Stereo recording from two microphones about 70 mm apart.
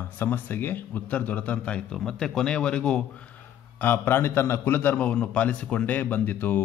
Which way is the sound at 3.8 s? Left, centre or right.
Left.